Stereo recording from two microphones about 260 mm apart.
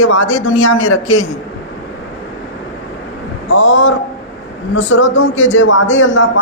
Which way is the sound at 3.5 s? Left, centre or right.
Left.